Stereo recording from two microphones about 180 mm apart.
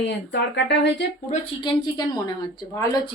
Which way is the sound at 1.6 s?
20° left (ahead or behind).